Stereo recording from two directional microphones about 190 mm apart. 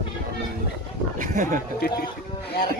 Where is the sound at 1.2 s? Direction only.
45° right (ahead or behind).